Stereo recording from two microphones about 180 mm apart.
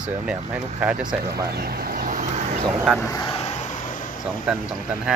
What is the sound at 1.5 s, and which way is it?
Vehicle, 60° right (ahead or behind).